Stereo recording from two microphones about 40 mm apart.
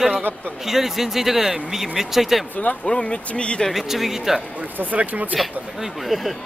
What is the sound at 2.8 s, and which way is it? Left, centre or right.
Speech, left.